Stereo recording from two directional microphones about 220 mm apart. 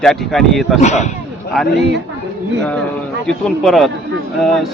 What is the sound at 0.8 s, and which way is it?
Speech, 30° left (ahead or behind).